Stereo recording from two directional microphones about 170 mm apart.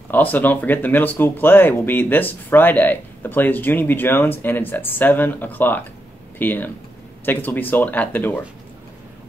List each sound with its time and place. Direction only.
0.1 s speech: 10° left (ahead or behind)